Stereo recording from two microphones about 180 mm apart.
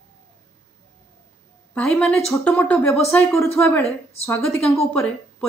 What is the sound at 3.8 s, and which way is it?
Speech, 35° left (ahead or behind).